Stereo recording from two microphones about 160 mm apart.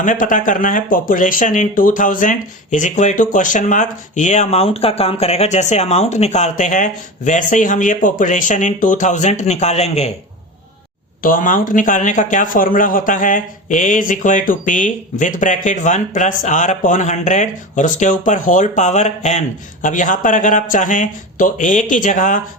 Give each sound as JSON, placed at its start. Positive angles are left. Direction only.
{"t": 0.0, "sound": "speech", "side_deg": 55}
{"t": 11.2, "sound": "speech", "side_deg": 55}